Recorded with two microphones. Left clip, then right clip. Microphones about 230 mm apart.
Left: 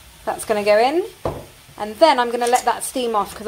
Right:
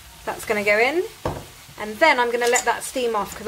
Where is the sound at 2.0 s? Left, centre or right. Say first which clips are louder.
Left 2 dB; centre.